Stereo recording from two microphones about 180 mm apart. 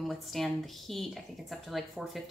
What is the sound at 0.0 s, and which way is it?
Speech, centre (ahead or behind).